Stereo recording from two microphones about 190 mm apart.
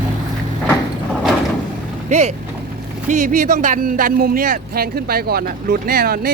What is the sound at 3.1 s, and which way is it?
Speech, 40° right (ahead or behind).